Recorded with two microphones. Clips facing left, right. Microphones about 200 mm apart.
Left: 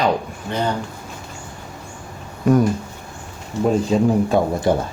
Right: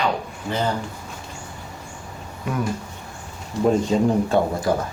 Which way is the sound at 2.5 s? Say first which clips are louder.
Left 12 dB; 40° left (ahead or behind).